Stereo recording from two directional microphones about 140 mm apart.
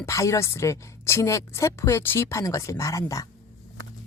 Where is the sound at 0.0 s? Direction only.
20° left (ahead or behind).